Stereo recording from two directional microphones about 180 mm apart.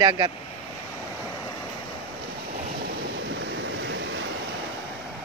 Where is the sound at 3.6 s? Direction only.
90° right.